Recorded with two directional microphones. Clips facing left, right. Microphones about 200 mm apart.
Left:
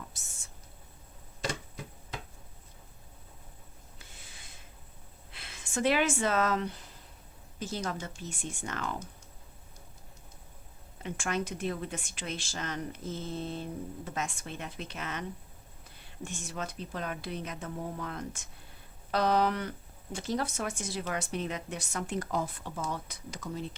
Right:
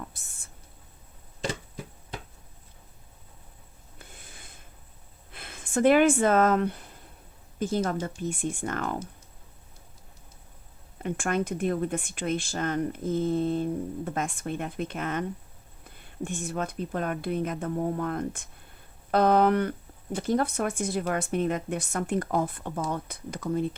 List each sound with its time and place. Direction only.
3.9 s sniff: 55° right (ahead or behind)
5.3 s speech: 50° right (ahead or behind)
11.0 s speech: 50° right (ahead or behind)